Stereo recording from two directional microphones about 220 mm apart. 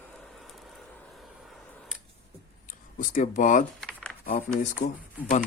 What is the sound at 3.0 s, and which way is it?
Speech, 35° left (ahead or behind).